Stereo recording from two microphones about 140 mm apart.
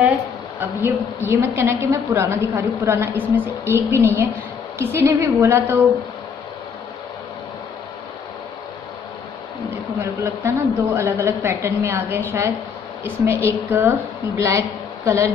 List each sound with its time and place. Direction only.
0.6 s a woman's voice: 15° right (ahead or behind)
9.9 s a woman's voice: 20° right (ahead or behind)